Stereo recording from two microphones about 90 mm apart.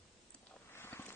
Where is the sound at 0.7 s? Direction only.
25° left (ahead or behind).